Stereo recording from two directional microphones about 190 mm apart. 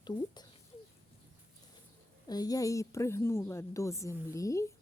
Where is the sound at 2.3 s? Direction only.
20° left (ahead or behind).